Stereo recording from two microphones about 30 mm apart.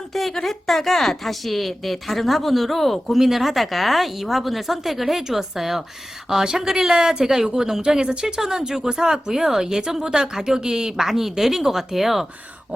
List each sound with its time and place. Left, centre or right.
0.1 s a sound: centre
0.4 s speech: centre
3.1 s speech: centre
6.4 s a woman's voice: right
6.7 s a woman's voice: centre; by 8.4 s right
8.4 s a woman's voice: centre